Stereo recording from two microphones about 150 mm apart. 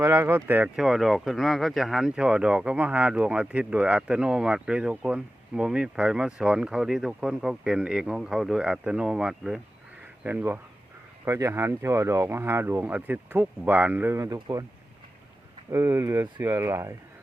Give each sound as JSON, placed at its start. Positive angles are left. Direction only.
{"t": 0.0, "sound": "speech", "side_deg": -15}
{"t": 14.3, "sound": "speech", "side_deg": -25}
{"t": 15.7, "sound": "speech", "side_deg": -20}